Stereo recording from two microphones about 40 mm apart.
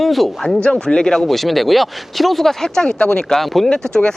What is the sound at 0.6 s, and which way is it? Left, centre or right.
Speech, left.